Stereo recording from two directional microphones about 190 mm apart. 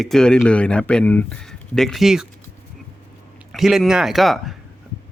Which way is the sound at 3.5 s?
Centre (ahead or behind).